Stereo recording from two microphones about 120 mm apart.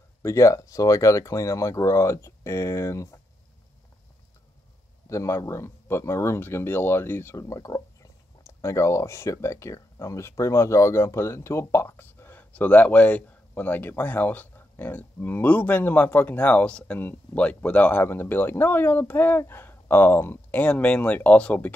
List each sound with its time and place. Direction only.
0.2 s speech: 25° left (ahead or behind)
5.1 s speech: 25° left (ahead or behind)